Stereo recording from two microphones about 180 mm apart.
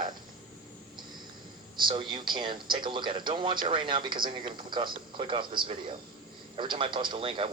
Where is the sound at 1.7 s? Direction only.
25° right (ahead or behind).